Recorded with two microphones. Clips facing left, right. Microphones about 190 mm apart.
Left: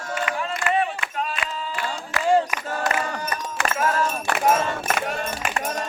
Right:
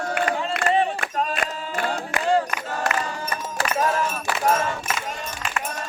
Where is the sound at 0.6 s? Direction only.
35° right (ahead or behind).